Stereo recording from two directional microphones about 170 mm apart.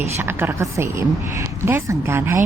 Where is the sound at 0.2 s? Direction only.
15° right (ahead or behind).